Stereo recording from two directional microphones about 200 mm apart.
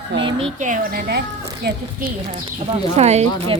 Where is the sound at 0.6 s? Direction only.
40° right (ahead or behind).